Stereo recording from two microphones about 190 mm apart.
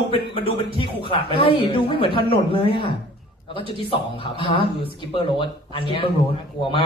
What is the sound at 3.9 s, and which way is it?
A man's voice, 25° left (ahead or behind).